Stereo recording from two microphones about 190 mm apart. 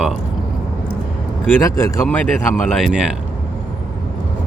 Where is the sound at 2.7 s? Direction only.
Centre (ahead or behind).